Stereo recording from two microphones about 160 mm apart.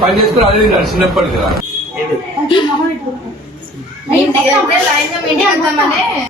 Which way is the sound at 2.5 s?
30° left (ahead or behind).